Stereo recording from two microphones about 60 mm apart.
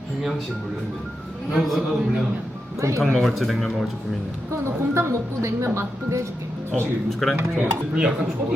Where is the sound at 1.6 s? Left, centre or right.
Centre.